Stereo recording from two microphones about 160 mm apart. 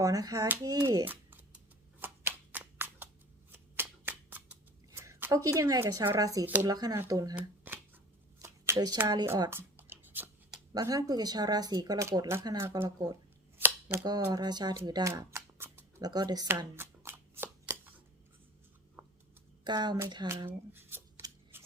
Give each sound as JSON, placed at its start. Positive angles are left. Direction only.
{"t": 0.0, "sound": "speech", "side_deg": -20}
{"t": 2.0, "sound": "shuffling cards", "side_deg": -10}
{"t": 4.9, "sound": "speech", "side_deg": -15}
{"t": 7.3, "sound": "shuffling cards", "side_deg": -10}
{"t": 8.4, "sound": "a sound", "side_deg": -20}
{"t": 9.0, "sound": "speech", "side_deg": -20}
{"t": 10.8, "sound": "speech", "side_deg": -20}
{"t": 13.6, "sound": "a sound", "side_deg": -10}
{"t": 14.0, "sound": "speech", "side_deg": -25}
{"t": 16.7, "sound": "shuffling cards", "side_deg": -15}
{"t": 19.0, "sound": "a sound", "side_deg": -10}
{"t": 19.6, "sound": "speech", "side_deg": -25}
{"t": 20.5, "sound": "a sound", "side_deg": -10}
{"t": 21.5, "sound": "shuffling cards", "side_deg": -15}